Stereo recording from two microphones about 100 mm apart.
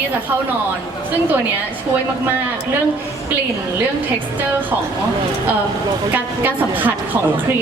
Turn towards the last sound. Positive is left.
turn(degrees=-20)  # may be behind; listen again after turning